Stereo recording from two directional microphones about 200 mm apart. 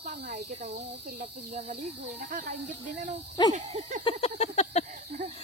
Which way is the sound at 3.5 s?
30° right (ahead or behind).